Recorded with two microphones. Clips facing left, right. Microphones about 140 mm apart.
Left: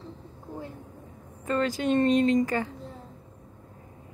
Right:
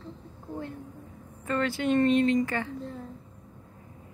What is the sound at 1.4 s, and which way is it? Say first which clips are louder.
A woman's voice: left 1 dB; 25° left (ahead or behind).